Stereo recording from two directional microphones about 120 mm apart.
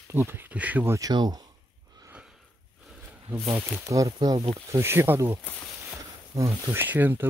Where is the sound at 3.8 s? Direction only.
30° right (ahead or behind).